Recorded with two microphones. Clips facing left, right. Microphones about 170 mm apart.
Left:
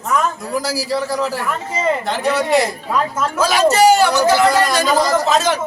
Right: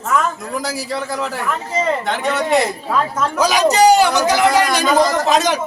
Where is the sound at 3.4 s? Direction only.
15° right (ahead or behind).